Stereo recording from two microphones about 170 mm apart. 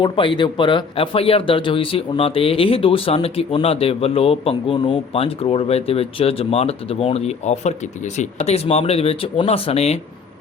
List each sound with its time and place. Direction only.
0.0 s speech: 30° left (ahead or behind)